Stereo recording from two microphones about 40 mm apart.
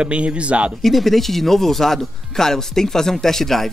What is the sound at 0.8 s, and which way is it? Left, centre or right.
Speech, centre.